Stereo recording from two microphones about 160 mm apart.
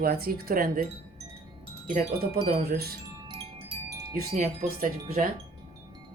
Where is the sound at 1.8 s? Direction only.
60° right (ahead or behind).